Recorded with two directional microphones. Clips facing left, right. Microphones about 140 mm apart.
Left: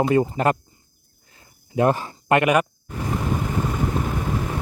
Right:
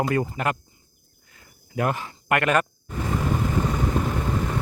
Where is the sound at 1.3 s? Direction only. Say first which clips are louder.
Left 1 dB; 30° left (ahead or behind).